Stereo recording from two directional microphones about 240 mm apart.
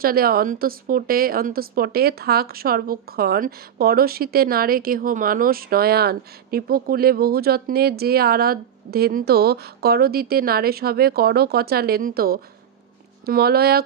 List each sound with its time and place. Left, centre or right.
0.0 s speech: right